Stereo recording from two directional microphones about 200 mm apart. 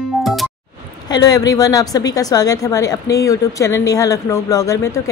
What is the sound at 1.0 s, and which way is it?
A woman's voice, 20° left (ahead or behind).